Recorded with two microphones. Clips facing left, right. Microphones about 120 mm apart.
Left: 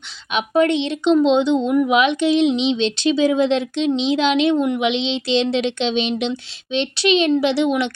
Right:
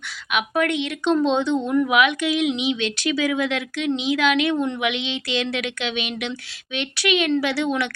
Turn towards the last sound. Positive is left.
turn(degrees=20)  # may be behind; listen again after turning